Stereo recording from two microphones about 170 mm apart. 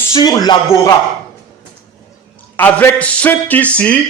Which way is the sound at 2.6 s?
10° left (ahead or behind).